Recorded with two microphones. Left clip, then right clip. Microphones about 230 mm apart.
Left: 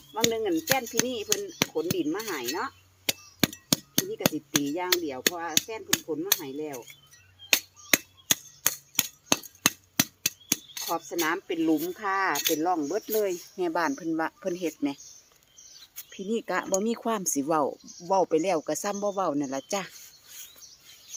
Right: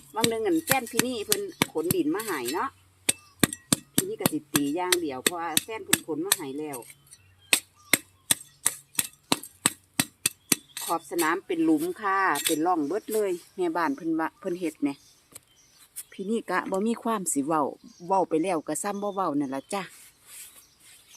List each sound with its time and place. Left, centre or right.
0.1 s speech: centre
2.6 s a sound: centre
4.7 s speech: centre
7.5 s a sound: centre
12.3 s speech: right
13.1 s speech: centre
16.0 s speech: centre